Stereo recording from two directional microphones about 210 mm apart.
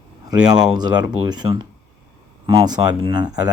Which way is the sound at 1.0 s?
20° right (ahead or behind).